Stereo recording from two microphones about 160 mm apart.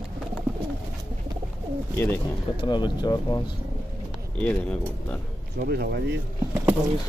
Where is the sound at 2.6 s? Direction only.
30° left (ahead or behind).